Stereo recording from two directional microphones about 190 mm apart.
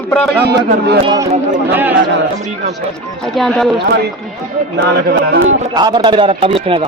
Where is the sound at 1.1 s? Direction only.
15° right (ahead or behind).